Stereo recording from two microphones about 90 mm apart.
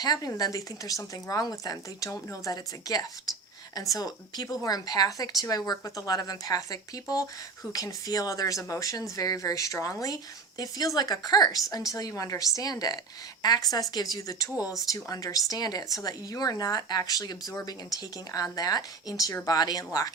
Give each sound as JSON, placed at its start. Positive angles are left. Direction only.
{"t": 0.0, "sound": "speech", "side_deg": 45}